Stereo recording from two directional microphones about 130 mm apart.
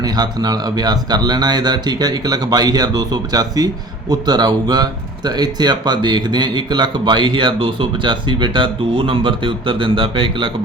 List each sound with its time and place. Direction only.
0.0 s speech: 30° right (ahead or behind)